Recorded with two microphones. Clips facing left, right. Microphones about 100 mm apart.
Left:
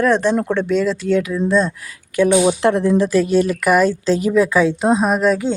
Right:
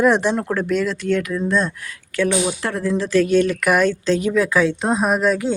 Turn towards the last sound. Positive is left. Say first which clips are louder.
# left 2 dB
turn(degrees=0)  # may be behind; listen again after turning